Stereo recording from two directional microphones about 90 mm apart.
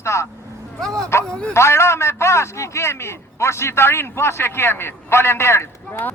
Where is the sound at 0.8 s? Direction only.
5° left (ahead or behind).